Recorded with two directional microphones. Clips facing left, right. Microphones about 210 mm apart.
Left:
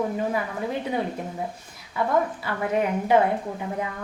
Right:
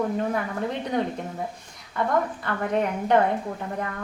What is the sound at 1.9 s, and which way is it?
A woman's voice, 5° left (ahead or behind).